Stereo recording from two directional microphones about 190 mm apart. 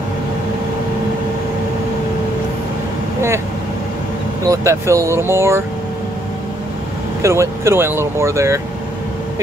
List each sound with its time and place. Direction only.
4.5 s speech: 15° right (ahead or behind)
7.2 s speech: 15° right (ahead or behind)